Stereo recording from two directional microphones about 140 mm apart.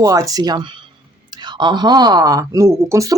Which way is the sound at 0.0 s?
25° right (ahead or behind).